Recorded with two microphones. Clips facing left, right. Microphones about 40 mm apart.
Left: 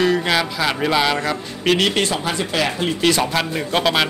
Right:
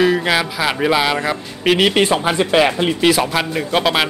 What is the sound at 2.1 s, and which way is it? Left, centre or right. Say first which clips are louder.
Speech: right 6 dB; right.